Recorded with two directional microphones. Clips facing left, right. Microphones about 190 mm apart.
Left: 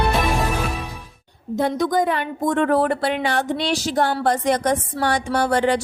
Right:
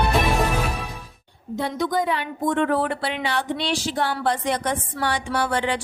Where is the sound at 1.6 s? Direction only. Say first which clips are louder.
Left 4 dB; 45° left (ahead or behind).